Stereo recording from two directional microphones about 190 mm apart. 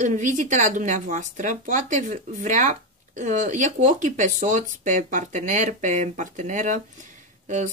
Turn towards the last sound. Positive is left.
turn(degrees=-40)  # may be behind; listen again after turning